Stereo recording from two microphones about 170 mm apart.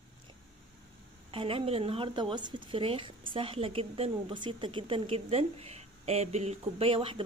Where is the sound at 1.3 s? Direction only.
30° right (ahead or behind).